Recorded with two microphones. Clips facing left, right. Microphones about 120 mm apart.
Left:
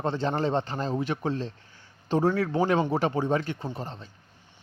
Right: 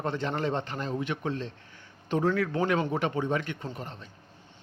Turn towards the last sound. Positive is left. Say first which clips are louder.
# left 3 dB
turn(degrees=30)  # may be behind; listen again after turning